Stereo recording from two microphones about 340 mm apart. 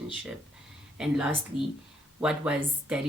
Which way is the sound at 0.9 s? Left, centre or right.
Centre.